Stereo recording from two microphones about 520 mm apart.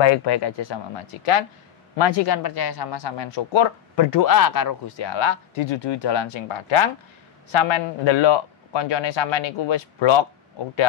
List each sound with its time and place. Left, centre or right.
0.0 s speech: left
2.0 s speech: left
4.8 s speech: left